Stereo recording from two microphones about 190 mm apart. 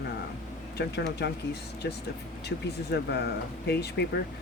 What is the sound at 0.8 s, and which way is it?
Speech, 60° left (ahead or behind).